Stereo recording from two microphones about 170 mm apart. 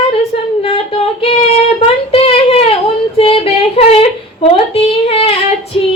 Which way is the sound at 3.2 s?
35° left (ahead or behind).